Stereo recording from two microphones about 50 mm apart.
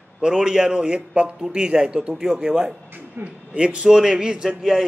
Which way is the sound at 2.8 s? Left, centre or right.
Right.